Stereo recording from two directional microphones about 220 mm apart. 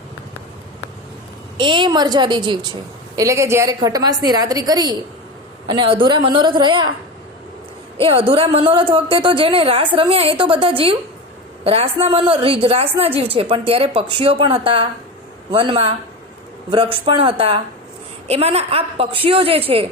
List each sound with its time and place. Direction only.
1.5 s a woman's voice: 20° right (ahead or behind)
8.0 s a woman's voice: 25° right (ahead or behind)